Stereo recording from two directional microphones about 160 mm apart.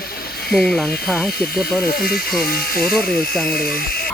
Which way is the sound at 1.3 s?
75° left (ahead or behind).